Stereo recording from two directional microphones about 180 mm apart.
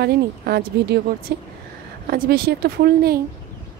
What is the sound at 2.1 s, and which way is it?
Speech, 55° right (ahead or behind).